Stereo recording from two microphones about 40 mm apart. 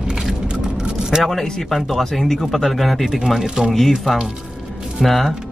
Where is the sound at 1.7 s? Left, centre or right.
Centre.